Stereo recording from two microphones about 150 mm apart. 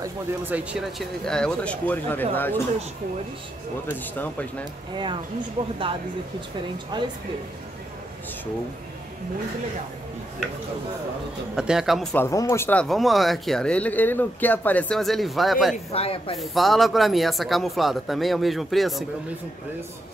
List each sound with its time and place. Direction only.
0.5 s speech: 10° right (ahead or behind); by 2.6 s 15° left (ahead or behind)
3.8 s speech: 10° left (ahead or behind)
4.9 s speech: 30° right (ahead or behind)
6.9 s speech: 30° right (ahead or behind)
11.5 s speech: 5° right (ahead or behind)
12.2 s speech: 20° left (ahead or behind)
12.8 s speech: centre (ahead or behind)
15.7 s speech: 40° left (ahead or behind)
16.3 s speech: centre (ahead or behind)